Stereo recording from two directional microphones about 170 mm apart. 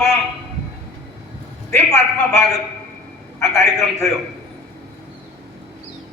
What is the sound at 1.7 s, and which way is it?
Speech, 15° left (ahead or behind).